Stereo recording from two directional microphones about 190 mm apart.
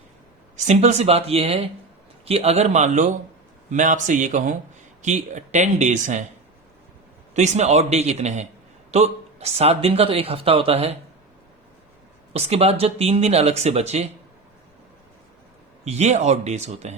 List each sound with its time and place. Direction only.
0.5 s speech: 35° right (ahead or behind)
7.3 s speech: 35° right (ahead or behind)
12.3 s speech: 35° right (ahead or behind)
15.8 s speech: 35° right (ahead or behind)